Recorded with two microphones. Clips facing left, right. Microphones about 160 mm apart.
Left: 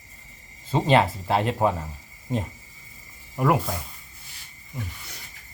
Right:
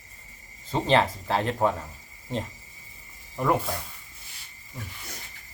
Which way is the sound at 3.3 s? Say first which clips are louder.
Left 2 dB; 5° left (ahead or behind).